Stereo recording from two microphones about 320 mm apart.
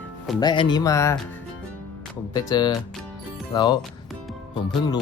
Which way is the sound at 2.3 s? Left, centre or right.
Centre.